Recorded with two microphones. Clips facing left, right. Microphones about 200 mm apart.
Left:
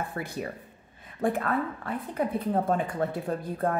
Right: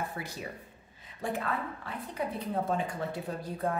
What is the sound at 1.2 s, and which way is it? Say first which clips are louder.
Speech: left 7 dB; 55° left (ahead or behind).